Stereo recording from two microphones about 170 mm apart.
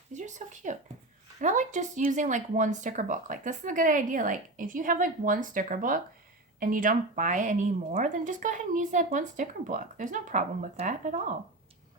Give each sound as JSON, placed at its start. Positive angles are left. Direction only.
{"t": 0.1, "sound": "speech", "side_deg": -45}